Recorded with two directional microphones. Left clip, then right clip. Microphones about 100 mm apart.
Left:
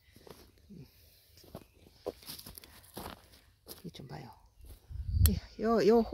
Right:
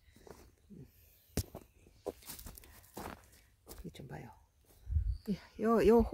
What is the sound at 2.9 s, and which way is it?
Walk, 30° left (ahead or behind).